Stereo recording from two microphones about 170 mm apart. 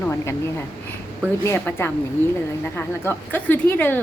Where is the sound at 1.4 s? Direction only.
15° left (ahead or behind).